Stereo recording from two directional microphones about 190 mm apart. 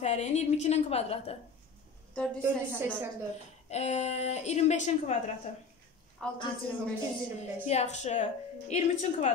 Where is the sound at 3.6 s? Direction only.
35° left (ahead or behind).